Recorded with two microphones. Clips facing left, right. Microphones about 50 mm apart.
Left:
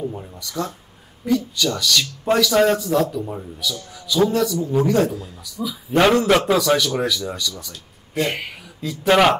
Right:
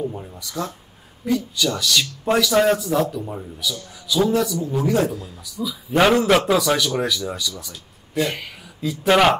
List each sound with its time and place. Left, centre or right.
0.0 s speech: centre
0.4 s a man's voice: centre
8.2 s speech: left
8.8 s a man's voice: centre